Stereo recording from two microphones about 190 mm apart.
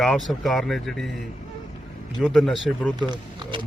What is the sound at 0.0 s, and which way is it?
Speech, centre (ahead or behind).